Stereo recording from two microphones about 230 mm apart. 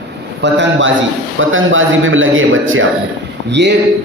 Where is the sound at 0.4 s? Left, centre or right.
Right.